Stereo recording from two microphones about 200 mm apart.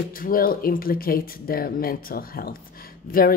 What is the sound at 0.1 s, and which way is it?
A woman's voice, 45° left (ahead or behind).